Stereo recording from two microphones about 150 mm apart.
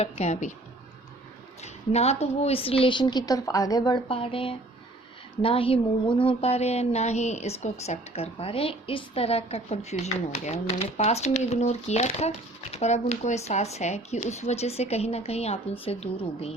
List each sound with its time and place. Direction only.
0.0 s a woman's voice: 45° left (ahead or behind)
1.6 s a woman's voice: 45° left (ahead or behind)